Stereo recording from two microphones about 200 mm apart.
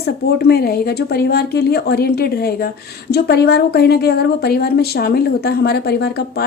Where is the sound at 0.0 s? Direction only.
50° left (ahead or behind).